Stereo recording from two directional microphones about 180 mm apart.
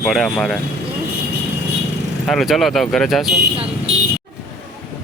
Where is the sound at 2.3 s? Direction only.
Centre (ahead or behind).